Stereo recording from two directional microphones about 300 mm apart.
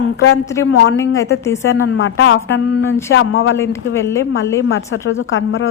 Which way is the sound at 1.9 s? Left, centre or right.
Left.